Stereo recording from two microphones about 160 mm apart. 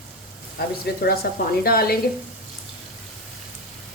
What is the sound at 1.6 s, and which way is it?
Speech, 70° left (ahead or behind).